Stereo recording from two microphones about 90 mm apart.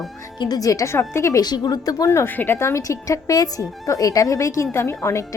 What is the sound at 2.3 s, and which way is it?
Speech, 25° left (ahead or behind).